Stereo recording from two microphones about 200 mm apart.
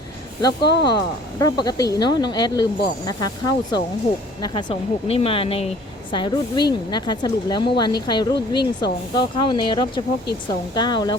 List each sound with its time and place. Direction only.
0.6 s speech: 55° left (ahead or behind)
0.9 s speech: 20° left (ahead or behind)